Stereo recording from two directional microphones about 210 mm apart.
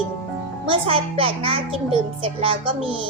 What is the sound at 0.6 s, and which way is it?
A child's voice, 25° right (ahead or behind).